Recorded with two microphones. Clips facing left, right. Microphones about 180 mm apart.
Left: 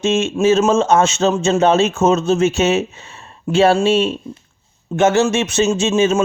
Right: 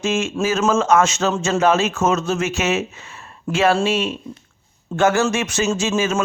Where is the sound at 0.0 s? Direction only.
25° left (ahead or behind).